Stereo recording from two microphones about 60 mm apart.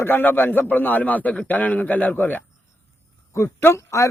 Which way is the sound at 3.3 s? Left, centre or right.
Left.